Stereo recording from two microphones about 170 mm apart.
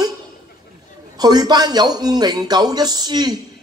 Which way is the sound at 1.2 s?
25° right (ahead or behind).